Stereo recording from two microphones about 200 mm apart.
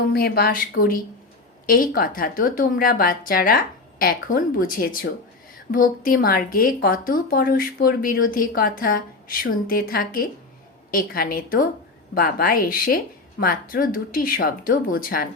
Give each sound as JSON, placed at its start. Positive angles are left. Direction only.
{"t": 0.1, "sound": "speech", "side_deg": 50}